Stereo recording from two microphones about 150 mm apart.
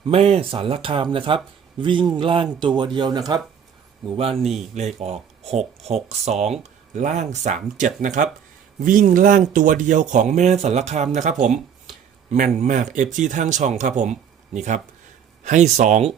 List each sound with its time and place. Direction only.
0.1 s speech: 40° right (ahead or behind); by 3.4 s 25° right (ahead or behind)
4.4 s speech: centre (ahead or behind)
4.7 s speech: 50° right (ahead or behind)